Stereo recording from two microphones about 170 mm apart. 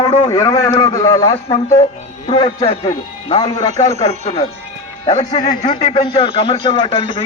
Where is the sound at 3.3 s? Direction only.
30° left (ahead or behind).